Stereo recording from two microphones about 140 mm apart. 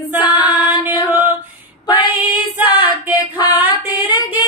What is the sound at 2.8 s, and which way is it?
Female singing, 30° left (ahead or behind).